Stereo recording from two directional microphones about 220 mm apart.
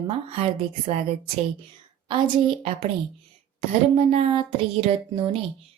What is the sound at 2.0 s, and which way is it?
Speech, 20° right (ahead or behind).